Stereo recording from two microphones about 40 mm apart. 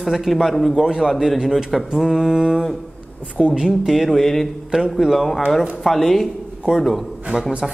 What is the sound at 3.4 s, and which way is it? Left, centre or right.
Speech, centre.